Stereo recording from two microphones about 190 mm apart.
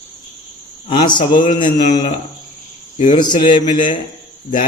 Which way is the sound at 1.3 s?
45° left (ahead or behind).